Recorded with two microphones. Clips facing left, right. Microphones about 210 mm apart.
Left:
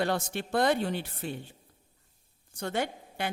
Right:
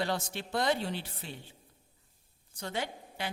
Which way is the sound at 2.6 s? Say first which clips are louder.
Left 5 dB; 55° left (ahead or behind).